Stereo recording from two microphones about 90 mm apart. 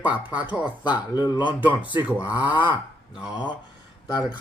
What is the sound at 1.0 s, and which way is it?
Speech, 50° left (ahead or behind).